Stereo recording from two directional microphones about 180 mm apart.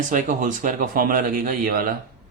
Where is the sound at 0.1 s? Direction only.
45° right (ahead or behind).